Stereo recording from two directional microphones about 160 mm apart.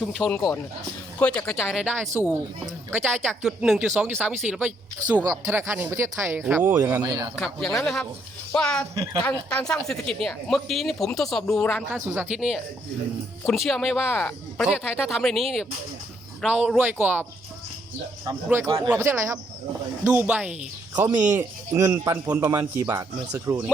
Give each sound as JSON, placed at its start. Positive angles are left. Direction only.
{"t": 0.0, "sound": "speech", "side_deg": 0}
{"t": 3.4, "sound": "speech", "side_deg": -5}
{"t": 5.2, "sound": "speech", "side_deg": -20}
{"t": 7.0, "sound": "a man's voice", "side_deg": -30}
{"t": 7.3, "sound": "speech", "side_deg": 0}
{"t": 11.9, "sound": "speech", "side_deg": -15}
{"t": 12.3, "sound": "speech", "side_deg": -5}
{"t": 18.6, "sound": "a man's voice", "side_deg": -20}
{"t": 20.9, "sound": "a man's voice", "side_deg": -20}